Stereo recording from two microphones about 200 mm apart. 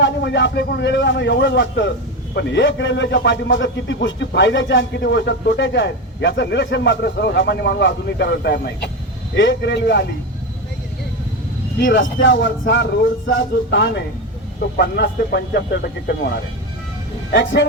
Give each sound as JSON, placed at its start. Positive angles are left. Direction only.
{"t": 0.0, "sound": "a man's voice", "side_deg": 65}
{"t": 11.9, "sound": "a man's voice", "side_deg": 65}
{"t": 17.3, "sound": "a man's voice", "side_deg": 60}